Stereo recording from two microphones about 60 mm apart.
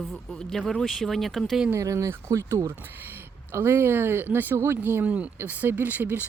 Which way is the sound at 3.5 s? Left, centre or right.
Right.